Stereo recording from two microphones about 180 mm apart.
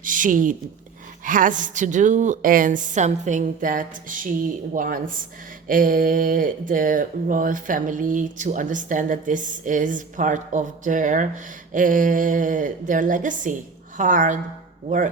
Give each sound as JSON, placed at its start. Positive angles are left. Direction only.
{"t": 0.0, "sound": "speech", "side_deg": -50}